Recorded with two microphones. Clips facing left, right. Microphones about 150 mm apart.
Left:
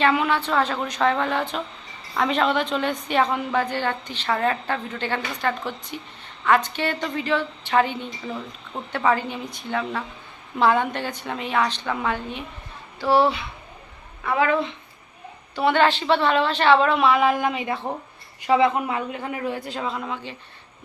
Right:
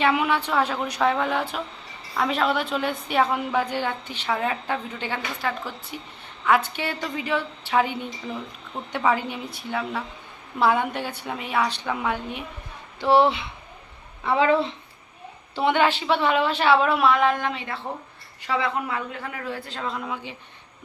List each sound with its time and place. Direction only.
0.0 s a woman's voice: 10° right (ahead or behind)
13.0 s speech: 20° right (ahead or behind)
15.5 s a woman's voice: 15° right (ahead or behind)
17.1 s a man's voice: 5° left (ahead or behind)
19.9 s speech: centre (ahead or behind)